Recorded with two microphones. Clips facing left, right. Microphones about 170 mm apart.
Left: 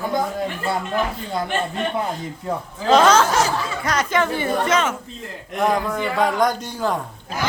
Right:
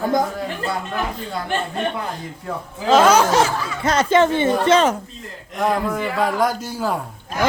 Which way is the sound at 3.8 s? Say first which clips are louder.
Right 7 dB; 25° right (ahead or behind).